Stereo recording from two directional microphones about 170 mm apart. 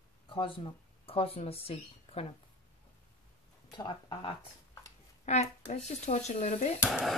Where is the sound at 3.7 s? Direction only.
25° left (ahead or behind).